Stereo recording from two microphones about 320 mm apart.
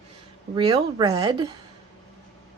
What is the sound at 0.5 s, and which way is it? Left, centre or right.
Speech, centre.